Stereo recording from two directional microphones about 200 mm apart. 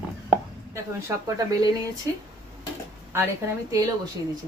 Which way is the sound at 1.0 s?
15° right (ahead or behind).